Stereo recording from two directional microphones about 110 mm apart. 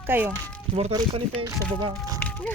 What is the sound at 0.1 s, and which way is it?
Speech, 20° right (ahead or behind).